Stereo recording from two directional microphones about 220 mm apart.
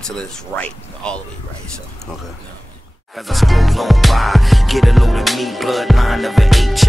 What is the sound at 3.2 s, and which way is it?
Music, centre (ahead or behind).